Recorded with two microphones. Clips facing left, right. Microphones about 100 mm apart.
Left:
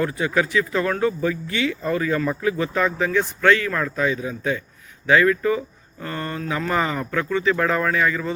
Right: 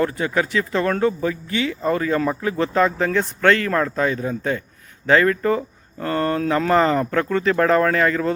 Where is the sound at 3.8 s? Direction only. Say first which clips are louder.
Right 2 dB; 30° right (ahead or behind).